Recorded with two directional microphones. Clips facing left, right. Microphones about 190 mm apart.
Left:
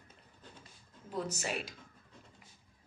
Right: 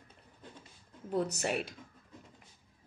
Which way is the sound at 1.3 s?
60° right (ahead or behind).